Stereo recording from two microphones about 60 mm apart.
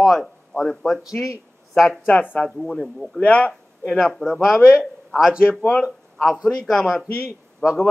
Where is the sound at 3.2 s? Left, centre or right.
Left.